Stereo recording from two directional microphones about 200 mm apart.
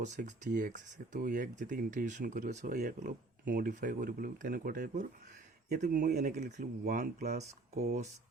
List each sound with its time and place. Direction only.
0.0 s speech: 35° right (ahead or behind)
6.3 s speech: 35° right (ahead or behind)